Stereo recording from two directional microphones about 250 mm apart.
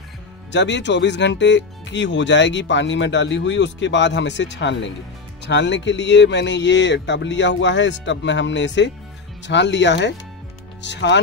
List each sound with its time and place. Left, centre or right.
0.5 s speech: left